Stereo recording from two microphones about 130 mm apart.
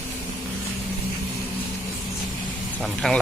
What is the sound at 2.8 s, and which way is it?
Speech, 5° left (ahead or behind).